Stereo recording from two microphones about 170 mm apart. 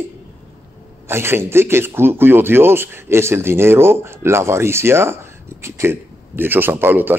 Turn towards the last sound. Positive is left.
turn(degrees=-10)  # may be behind; listen again after turning